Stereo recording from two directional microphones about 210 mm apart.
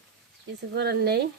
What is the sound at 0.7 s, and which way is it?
Speech, 50° right (ahead or behind).